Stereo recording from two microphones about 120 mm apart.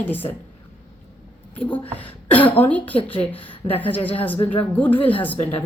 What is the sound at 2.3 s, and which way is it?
Speech, 15° left (ahead or behind).